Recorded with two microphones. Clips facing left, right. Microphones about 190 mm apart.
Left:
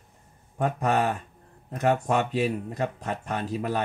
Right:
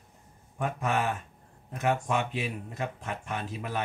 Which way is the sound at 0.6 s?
40° left (ahead or behind).